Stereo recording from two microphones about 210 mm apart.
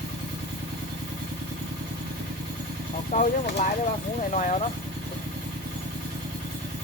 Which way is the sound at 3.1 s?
35° left (ahead or behind).